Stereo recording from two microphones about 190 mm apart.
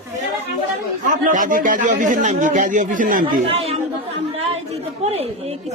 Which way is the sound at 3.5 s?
30° right (ahead or behind).